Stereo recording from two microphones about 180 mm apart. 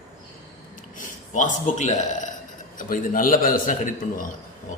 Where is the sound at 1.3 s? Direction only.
45° left (ahead or behind).